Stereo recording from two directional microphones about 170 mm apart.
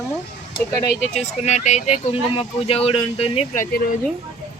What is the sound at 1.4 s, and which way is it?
Speech, 45° left (ahead or behind).